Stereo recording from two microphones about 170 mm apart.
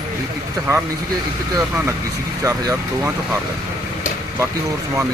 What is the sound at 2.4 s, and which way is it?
Speech, 20° right (ahead or behind).